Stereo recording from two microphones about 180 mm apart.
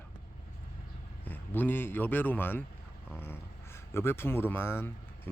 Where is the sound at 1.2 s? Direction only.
10° left (ahead or behind).